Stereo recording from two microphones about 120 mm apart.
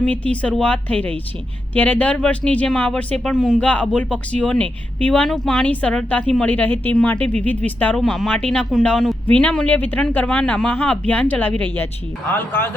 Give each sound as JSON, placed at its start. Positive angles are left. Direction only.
{"t": 0.0, "sound": "speech", "side_deg": 10}
{"t": 7.9, "sound": "speech", "side_deg": 0}